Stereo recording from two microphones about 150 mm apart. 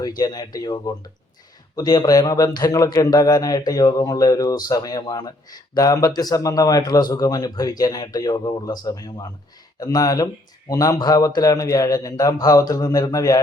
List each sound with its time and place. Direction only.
0.2 s a man's voice: 25° left (ahead or behind)